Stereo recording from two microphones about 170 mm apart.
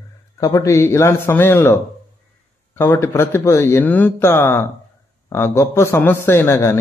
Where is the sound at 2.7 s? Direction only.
15° left (ahead or behind).